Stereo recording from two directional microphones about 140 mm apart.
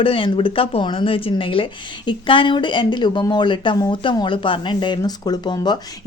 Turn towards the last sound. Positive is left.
turn(degrees=30)  # may be behind; listen again after turning